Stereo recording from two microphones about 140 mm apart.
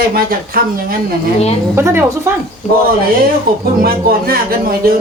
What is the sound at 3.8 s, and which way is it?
Speech, 90° right.